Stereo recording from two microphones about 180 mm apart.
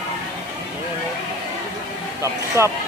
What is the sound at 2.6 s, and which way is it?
Speech, 15° right (ahead or behind).